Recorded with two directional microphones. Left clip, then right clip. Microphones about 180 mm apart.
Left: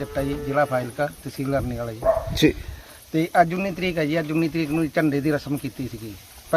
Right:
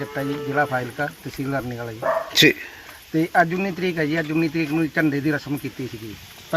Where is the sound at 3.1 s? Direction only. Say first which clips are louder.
Even; 35° left (ahead or behind).